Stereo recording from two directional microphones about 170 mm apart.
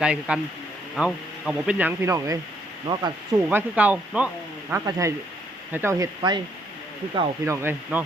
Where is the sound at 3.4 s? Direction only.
10° right (ahead or behind).